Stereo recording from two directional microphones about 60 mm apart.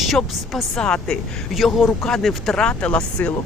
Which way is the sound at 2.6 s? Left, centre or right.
Left.